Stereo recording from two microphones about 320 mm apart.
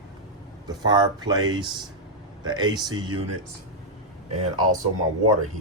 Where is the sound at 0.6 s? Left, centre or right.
Centre.